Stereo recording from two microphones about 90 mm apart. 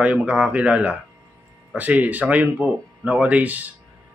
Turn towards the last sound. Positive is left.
turn(degrees=-20)  # may be behind; listen again after turning